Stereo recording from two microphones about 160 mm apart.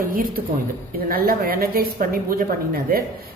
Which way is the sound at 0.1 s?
60° right (ahead or behind).